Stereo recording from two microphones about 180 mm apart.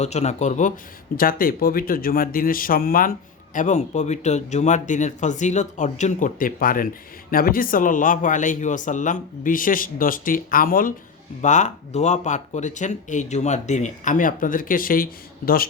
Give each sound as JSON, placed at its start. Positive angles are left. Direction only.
{"t": 0.0, "sound": "speech", "side_deg": 40}
{"t": 1.1, "sound": "speech", "side_deg": 55}